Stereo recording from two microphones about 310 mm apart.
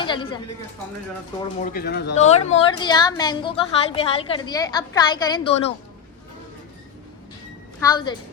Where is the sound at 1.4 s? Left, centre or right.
Left.